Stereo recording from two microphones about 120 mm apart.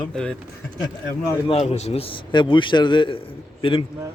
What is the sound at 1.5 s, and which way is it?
A man's voice, 60° left (ahead or behind).